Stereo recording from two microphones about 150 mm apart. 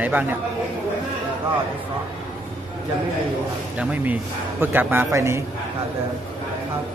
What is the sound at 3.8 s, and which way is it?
A man's voice, 10° right (ahead or behind).